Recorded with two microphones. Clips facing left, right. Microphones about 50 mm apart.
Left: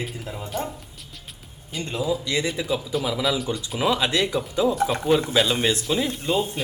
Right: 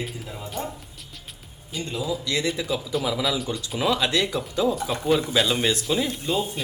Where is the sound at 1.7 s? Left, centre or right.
Centre.